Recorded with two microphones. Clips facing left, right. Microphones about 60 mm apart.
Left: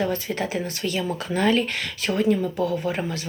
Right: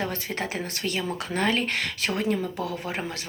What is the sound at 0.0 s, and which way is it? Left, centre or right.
Speech, right.